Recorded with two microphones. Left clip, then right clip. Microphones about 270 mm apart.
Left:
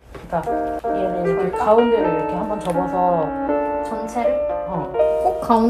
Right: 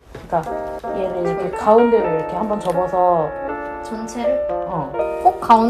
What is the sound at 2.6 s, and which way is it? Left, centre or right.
Speech, right.